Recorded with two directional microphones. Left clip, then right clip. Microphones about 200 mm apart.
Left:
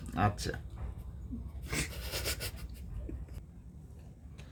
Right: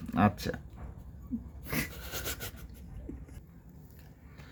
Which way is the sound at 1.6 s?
45° right (ahead or behind).